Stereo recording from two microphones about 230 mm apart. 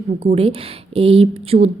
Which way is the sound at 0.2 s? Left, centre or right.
Right.